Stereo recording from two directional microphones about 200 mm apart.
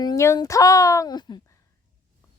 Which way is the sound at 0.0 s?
15° left (ahead or behind).